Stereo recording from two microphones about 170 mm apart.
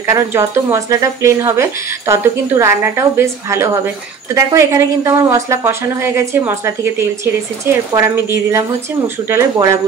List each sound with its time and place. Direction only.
0.0 s speech: 15° right (ahead or behind)